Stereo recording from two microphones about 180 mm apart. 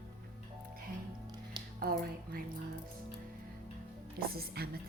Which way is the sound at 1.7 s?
55° right (ahead or behind).